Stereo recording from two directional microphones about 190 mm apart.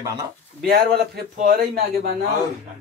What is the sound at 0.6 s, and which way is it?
Speech, 55° right (ahead or behind).